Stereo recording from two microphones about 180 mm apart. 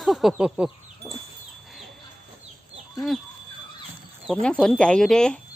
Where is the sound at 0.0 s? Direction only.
Centre (ahead or behind).